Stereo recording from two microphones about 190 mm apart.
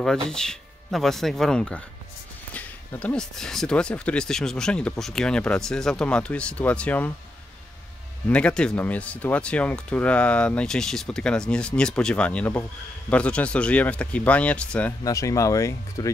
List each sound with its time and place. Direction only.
0.0 s speech: 5° left (ahead or behind)
8.3 s speech: 5° left (ahead or behind)
15.0 s speech: 15° left (ahead or behind)